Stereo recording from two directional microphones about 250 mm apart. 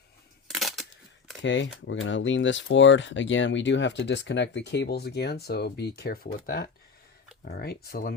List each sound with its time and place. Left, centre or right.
0.4 s crushing: centre
1.4 s speech: left